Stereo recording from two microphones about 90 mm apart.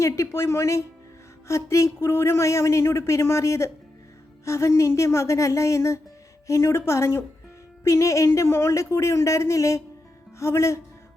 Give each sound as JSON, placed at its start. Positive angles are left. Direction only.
{"t": 0.0, "sound": "speech", "side_deg": 30}